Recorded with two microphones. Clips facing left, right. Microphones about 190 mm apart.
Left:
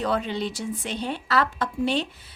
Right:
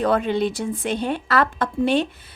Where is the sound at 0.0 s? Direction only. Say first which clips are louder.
Right 6 dB; 55° right (ahead or behind).